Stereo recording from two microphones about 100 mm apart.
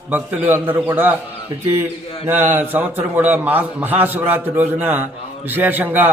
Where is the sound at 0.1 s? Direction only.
15° right (ahead or behind).